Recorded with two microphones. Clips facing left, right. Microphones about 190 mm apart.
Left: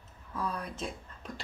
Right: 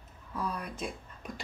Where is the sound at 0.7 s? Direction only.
10° right (ahead or behind).